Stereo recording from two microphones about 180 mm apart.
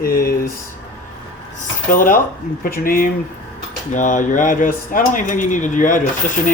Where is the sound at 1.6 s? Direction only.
50° left (ahead or behind).